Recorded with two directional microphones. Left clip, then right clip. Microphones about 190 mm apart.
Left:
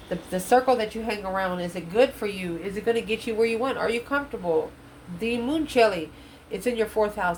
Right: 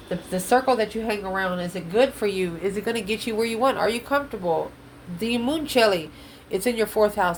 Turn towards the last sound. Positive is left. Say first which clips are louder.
# right 3 dB
turn(degrees=-50)  # may be behind; listen again after turning